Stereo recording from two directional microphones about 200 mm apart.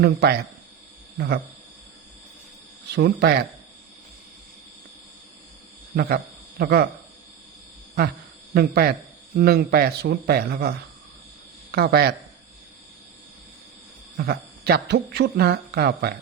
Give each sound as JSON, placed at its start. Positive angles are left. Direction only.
{"t": 0.0, "sound": "a man's voice", "side_deg": -55}
{"t": 2.9, "sound": "speech", "side_deg": -55}
{"t": 6.0, "sound": "speech", "side_deg": -50}
{"t": 8.5, "sound": "a man's voice", "side_deg": -50}
{"t": 14.2, "sound": "a man's voice", "side_deg": -55}